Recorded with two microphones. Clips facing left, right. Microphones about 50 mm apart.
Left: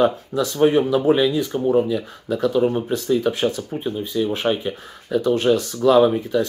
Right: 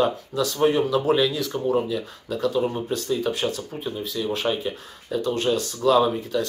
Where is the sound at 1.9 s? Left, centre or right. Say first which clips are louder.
Left 5 dB; left.